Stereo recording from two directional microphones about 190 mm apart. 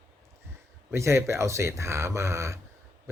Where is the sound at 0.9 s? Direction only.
15° right (ahead or behind).